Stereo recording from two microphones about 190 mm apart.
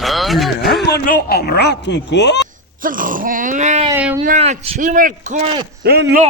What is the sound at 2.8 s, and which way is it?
Groan, 45° right (ahead or behind).